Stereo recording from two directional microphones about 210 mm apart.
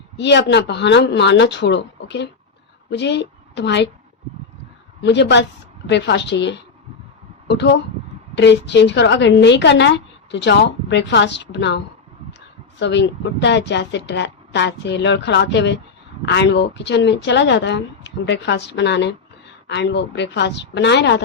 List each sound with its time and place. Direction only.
0.2 s a woman's voice: 55° left (ahead or behind)
5.0 s a woman's voice: 55° left (ahead or behind)
12.8 s a woman's voice: 55° left (ahead or behind)